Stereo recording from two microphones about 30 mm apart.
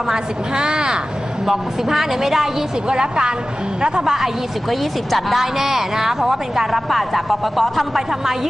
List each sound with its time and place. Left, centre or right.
0.1 s a woman's voice: right
1.4 s a woman's voice: centre
2.9 s a woman's voice: right
4.0 s a woman's voice: centre
4.6 s speech: centre
5.4 s a woman's voice: centre
6.7 s speech: centre